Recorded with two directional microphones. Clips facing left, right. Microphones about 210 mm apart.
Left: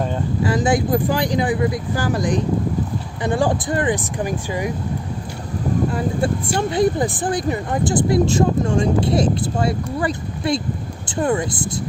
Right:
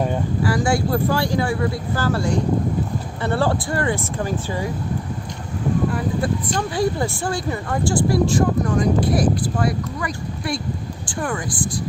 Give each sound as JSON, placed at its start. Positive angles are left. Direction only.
{"t": 0.4, "sound": "speech", "side_deg": 20}
{"t": 6.6, "sound": "a woman's voice", "side_deg": 20}